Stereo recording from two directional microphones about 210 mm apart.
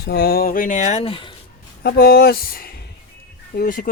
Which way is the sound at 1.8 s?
45° left (ahead or behind).